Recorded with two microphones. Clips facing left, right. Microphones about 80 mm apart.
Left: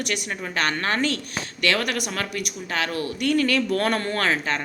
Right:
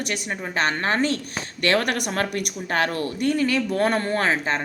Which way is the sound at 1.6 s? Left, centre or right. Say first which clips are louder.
Right 2 dB; right.